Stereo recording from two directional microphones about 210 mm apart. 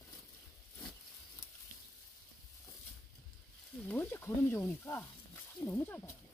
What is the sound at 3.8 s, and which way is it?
Sizzle, 10° left (ahead or behind).